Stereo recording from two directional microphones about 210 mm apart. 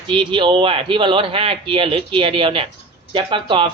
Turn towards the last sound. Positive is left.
turn(degrees=-25)  # may be behind; listen again after turning